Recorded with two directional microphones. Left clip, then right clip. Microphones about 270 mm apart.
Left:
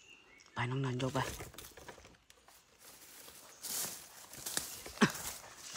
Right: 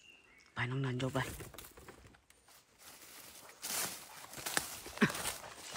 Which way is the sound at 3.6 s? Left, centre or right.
Centre.